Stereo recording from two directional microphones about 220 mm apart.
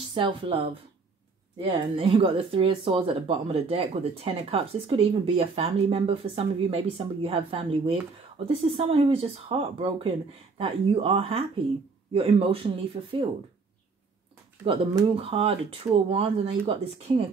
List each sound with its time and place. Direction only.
0.1 s speech: 25° right (ahead or behind)
1.6 s speech: 25° right (ahead or behind)
14.6 s speech: 25° right (ahead or behind)